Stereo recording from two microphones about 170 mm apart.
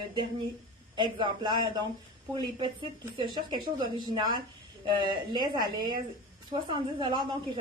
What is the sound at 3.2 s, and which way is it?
A woman's voice, 25° right (ahead or behind).